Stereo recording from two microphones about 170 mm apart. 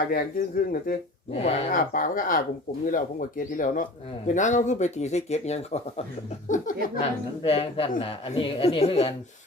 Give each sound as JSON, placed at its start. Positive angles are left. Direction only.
{"t": 0.1, "sound": "speech", "side_deg": 55}
{"t": 1.3, "sound": "speech", "side_deg": 40}
{"t": 1.7, "sound": "speech", "side_deg": 55}
{"t": 6.5, "sound": "speech", "side_deg": 50}
{"t": 7.4, "sound": "speech", "side_deg": 35}